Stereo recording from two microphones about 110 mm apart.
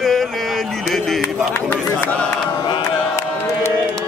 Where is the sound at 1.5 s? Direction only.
15° left (ahead or behind).